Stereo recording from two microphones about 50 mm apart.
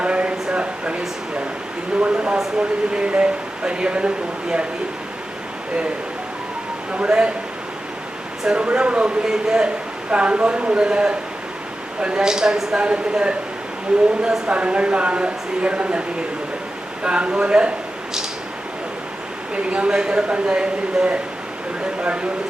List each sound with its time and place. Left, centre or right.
0.0 s a sound: right
2.0 s a sound: right
2.6 s speech: right
6.9 s speech: right
8.4 s speech: right
10.1 s speech: right
19.5 s speech: right